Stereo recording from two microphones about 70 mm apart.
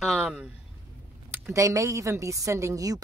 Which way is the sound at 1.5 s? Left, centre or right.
Right.